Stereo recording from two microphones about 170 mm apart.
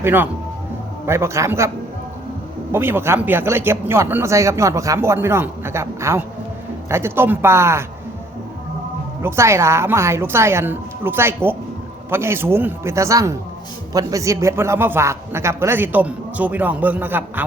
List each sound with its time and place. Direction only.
0.0 s speech: 10° right (ahead or behind)
2.7 s speech: 15° right (ahead or behind)
9.2 s speech: 15° right (ahead or behind)